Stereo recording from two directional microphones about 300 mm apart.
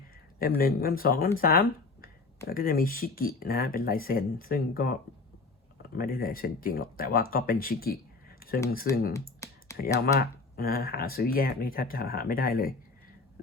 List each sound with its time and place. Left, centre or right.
0.6 s speech: left
6.0 s speech: left
9.4 s computer keyboard: centre
9.7 s speech: left